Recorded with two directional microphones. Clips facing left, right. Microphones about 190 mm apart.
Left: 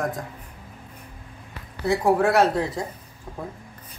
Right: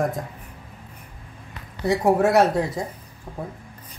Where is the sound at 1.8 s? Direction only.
20° right (ahead or behind).